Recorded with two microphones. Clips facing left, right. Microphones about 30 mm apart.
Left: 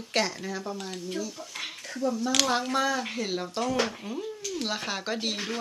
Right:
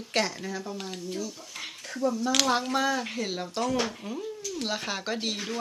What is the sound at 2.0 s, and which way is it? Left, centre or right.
A woman's voice, centre.